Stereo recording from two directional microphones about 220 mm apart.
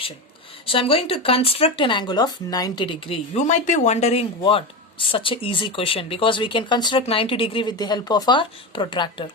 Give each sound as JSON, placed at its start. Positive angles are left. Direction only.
{"t": 0.6, "sound": "speech", "side_deg": 25}